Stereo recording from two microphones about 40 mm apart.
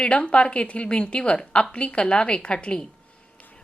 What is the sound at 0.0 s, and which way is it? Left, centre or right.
A woman's voice, left.